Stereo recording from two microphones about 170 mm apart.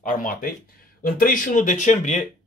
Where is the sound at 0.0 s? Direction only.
55° left (ahead or behind).